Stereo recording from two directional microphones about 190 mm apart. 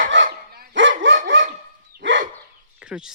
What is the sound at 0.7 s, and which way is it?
Dog, 75° right (ahead or behind).